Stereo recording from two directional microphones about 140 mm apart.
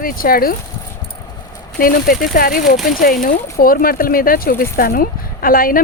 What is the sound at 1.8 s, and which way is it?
Speech, 90° left.